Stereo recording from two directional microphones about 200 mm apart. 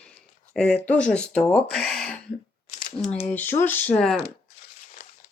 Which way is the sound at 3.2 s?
10° left (ahead or behind).